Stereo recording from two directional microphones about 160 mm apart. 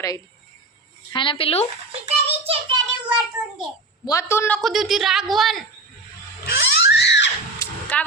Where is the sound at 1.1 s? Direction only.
30° left (ahead or behind).